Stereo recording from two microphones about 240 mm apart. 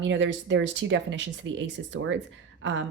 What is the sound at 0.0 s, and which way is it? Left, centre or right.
A woman's voice, right.